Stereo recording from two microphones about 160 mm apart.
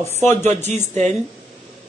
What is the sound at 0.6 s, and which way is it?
Speech, 45° right (ahead or behind).